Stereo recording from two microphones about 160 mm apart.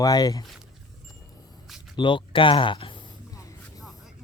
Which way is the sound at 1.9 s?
30° left (ahead or behind).